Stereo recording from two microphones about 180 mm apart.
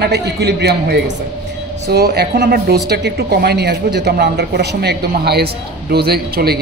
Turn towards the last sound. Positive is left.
turn(degrees=-60)  # may be behind; listen again after turning